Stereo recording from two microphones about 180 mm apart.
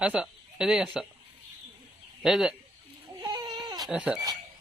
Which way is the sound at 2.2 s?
Centre (ahead or behind).